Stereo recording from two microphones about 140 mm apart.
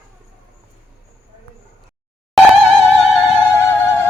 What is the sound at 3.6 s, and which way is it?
Music, 15° left (ahead or behind).